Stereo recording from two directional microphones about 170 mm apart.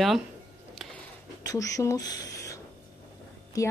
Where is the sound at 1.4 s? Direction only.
20° left (ahead or behind).